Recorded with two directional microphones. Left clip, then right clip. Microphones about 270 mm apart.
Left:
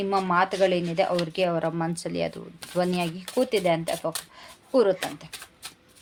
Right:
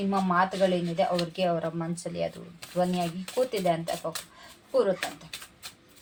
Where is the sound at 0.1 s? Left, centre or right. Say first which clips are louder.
Left 2 dB; left.